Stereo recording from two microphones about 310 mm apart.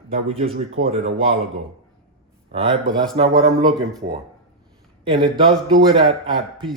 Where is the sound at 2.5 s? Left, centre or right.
Centre.